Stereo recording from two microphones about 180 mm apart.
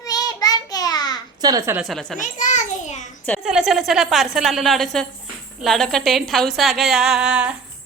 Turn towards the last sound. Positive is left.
turn(degrees=-5)  # may be behind; listen again after turning